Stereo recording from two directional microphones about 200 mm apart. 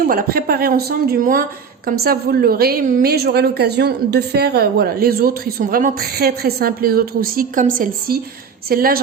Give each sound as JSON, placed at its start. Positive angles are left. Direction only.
{"t": 0.1, "sound": "a woman's voice", "side_deg": -45}